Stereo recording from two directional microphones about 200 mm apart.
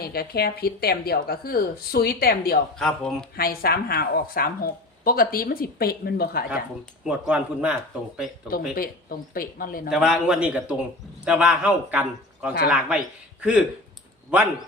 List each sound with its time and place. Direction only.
0.0 s speech: 50° left (ahead or behind)
2.7 s speech: 5° left (ahead or behind)
3.3 s speech: 50° left (ahead or behind)
7.0 s speech: 5° right (ahead or behind)
8.7 s speech: 45° left (ahead or behind)
9.9 s speech: 5° right (ahead or behind)